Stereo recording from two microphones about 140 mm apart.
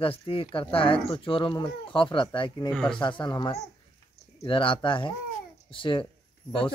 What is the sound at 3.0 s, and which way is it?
Speech, 35° left (ahead or behind).